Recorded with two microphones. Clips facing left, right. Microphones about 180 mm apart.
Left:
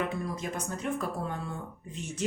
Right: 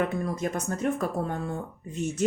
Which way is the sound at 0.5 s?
45° right (ahead or behind).